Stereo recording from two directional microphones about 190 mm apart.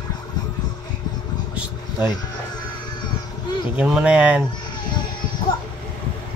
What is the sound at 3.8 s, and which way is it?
Speech, 5° right (ahead or behind).